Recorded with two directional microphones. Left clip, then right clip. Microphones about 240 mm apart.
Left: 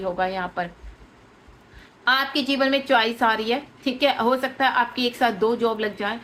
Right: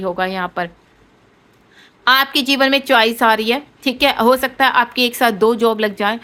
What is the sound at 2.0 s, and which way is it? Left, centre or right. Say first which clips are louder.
A woman's voice: right 7 dB; right.